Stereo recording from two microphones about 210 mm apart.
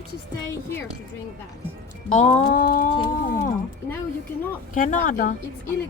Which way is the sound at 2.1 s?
35° left (ahead or behind).